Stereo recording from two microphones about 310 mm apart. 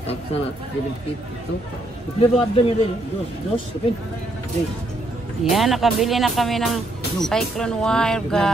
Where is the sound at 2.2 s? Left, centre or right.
Centre.